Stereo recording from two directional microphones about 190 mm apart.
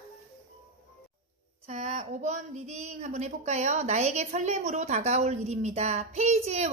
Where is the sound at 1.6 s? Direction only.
35° right (ahead or behind).